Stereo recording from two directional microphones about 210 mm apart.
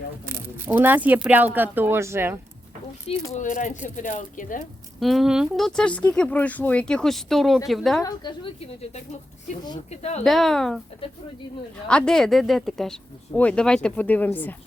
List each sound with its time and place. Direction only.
0.3 s speech: 10° right (ahead or behind)
3.3 s speech: 35° left (ahead or behind)
4.9 s speech: centre (ahead or behind)
8.0 s a woman's voice: 20° left (ahead or behind)
9.9 s speech: 30° left (ahead or behind)
10.2 s speech: centre (ahead or behind)
11.9 s speech: 5° left (ahead or behind)